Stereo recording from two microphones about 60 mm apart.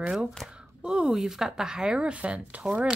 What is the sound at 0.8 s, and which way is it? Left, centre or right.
Speech, centre.